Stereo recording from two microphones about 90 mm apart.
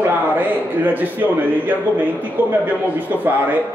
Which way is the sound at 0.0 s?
20° right (ahead or behind).